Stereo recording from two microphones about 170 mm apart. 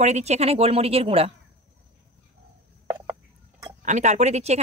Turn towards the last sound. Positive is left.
turn(degrees=-40)  # may be behind; listen again after turning